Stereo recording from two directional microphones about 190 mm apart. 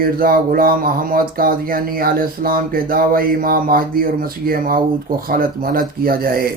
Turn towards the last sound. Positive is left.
turn(degrees=-50)  # may be behind; listen again after turning